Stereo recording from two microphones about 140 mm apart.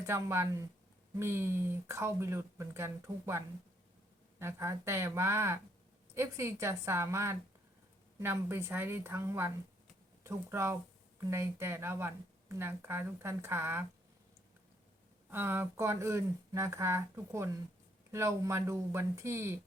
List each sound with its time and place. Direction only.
0.0 s speech: 20° right (ahead or behind)
15.3 s speech: 15° right (ahead or behind)